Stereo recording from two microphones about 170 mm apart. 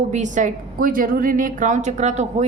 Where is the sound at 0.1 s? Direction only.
45° right (ahead or behind).